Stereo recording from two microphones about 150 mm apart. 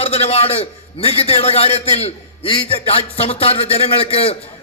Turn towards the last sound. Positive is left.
turn(degrees=40)  # may be behind; listen again after turning